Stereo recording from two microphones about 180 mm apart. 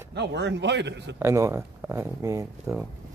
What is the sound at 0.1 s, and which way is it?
A man's voice, 75° right (ahead or behind).